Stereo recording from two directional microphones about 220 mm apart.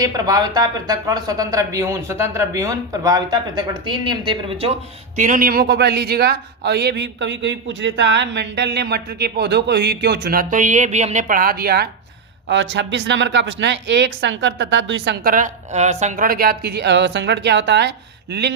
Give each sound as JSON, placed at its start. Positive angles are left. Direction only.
{"t": 0.0, "sound": "speech", "side_deg": -15}
{"t": 5.1, "sound": "a man's voice", "side_deg": -35}